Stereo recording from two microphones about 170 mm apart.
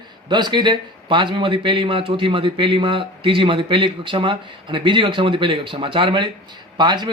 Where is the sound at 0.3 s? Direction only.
25° right (ahead or behind).